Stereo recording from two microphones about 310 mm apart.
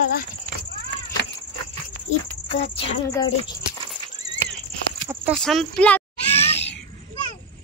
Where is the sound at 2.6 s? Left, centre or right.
Centre.